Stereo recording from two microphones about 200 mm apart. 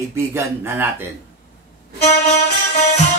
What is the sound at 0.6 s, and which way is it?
Speech, 10° right (ahead or behind).